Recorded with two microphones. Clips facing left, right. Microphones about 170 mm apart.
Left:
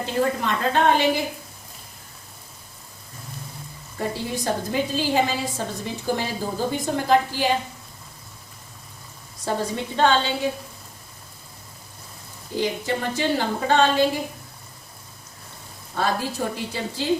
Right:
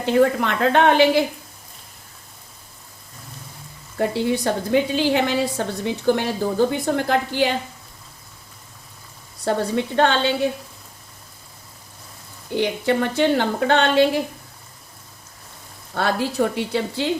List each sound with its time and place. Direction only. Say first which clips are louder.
0.0 s a woman's voice: right 6 dB; 70° right (ahead or behind)
3.9 s a woman's voice: right 7 dB; 65° right (ahead or behind)
9.4 s a woman's voice: right 5 dB; 65° right (ahead or behind)
12.5 s a woman's voice: right 5 dB; 65° right (ahead or behind)
16.0 s a woman's voice: right 4 dB; 70° right (ahead or behind)